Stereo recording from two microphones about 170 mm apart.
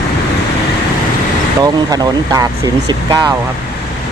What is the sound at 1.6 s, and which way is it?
Speech, 25° right (ahead or behind).